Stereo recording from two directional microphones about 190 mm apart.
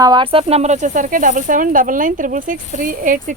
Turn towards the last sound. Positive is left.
turn(degrees=-45)  # may be behind; listen again after turning